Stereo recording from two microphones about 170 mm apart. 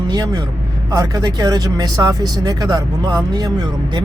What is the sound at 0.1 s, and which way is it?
Speech, 25° right (ahead or behind).